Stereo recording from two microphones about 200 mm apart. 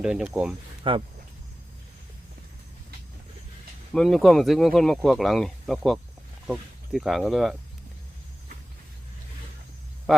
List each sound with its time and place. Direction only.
0.0 s speech: 5° right (ahead or behind)
0.9 s speech: 25° right (ahead or behind)
3.9 s speech: centre (ahead or behind)
10.1 s speech: centre (ahead or behind)